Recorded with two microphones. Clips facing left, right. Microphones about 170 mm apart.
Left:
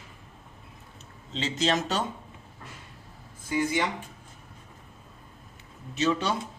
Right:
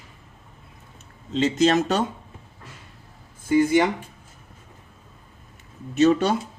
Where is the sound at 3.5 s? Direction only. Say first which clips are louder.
Right 9 dB; 55° right (ahead or behind).